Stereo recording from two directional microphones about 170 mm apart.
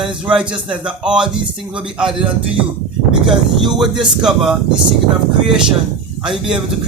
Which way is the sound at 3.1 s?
30° right (ahead or behind).